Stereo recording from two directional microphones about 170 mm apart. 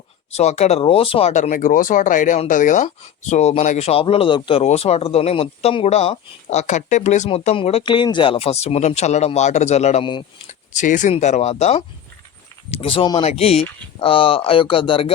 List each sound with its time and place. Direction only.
0.3 s speech: 40° left (ahead or behind)
10.1 s speech: 30° left (ahead or behind)
10.8 s speech: 50° left (ahead or behind); by 15.1 s 30° left (ahead or behind)